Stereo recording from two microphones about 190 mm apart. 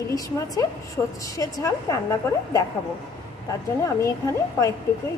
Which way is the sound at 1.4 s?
20° left (ahead or behind).